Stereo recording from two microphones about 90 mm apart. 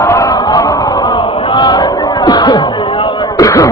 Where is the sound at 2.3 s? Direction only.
50° left (ahead or behind).